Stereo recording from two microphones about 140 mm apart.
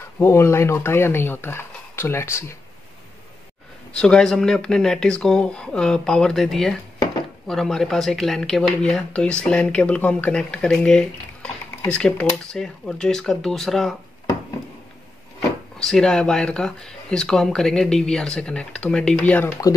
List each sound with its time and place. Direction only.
0.2 s speech: 20° left (ahead or behind)
3.9 s speech: 5° left (ahead or behind)
15.8 s speech: 5° left (ahead or behind)